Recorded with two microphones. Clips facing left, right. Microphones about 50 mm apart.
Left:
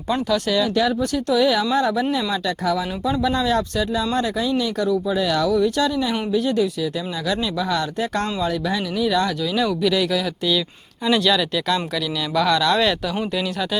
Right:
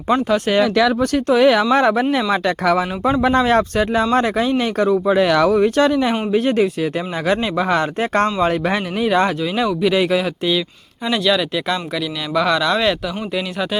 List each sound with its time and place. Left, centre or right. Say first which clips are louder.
0.1 s speech: right 4 dB; right
0.6 s speech: right 4 dB; right
1.1 s speech: right 6 dB; right
9.6 s speech: right 5 dB; right
11.0 s speech: right 1 dB; centre